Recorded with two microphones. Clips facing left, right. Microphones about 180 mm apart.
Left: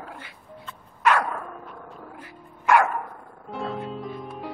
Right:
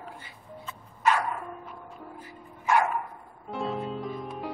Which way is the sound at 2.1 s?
75° left (ahead or behind).